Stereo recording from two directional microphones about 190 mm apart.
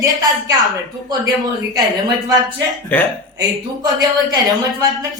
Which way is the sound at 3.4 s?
20° right (ahead or behind).